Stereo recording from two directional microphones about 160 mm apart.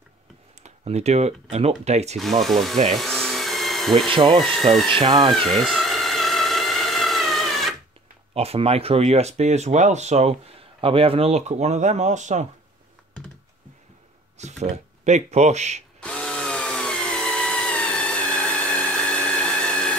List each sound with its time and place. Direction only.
0.7 s speech: 45° right (ahead or behind)
2.4 s speech: centre (ahead or behind)
2.9 s tools: centre (ahead or behind)
4.5 s speech: centre (ahead or behind)
4.8 s speech: 30° right (ahead or behind)
5.3 s a sound: centre (ahead or behind)
8.4 s speech: 40° right (ahead or behind)
14.4 s speech: 45° right (ahead or behind)
16.0 s tools: 5° left (ahead or behind)